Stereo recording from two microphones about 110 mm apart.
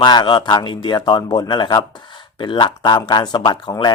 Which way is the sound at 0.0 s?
40° left (ahead or behind).